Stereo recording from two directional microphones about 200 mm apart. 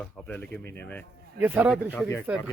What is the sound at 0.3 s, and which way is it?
Speech, 5° left (ahead or behind).